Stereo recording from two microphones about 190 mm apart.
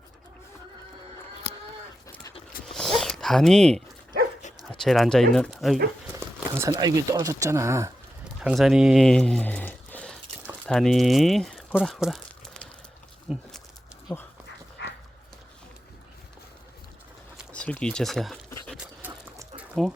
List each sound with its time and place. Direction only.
2.6 s zipper: centre (ahead or behind)
4.7 s speech: centre (ahead or behind)
6.1 s speech: 15° right (ahead or behind)
8.4 s speech: centre (ahead or behind)
13.2 s a sound: 5° right (ahead or behind)
14.1 s speech: 10° left (ahead or behind)
14.8 s dog: 65° left (ahead or behind)
17.5 s a sound: 5° left (ahead or behind)
19.0 s a sound: 10° right (ahead or behind)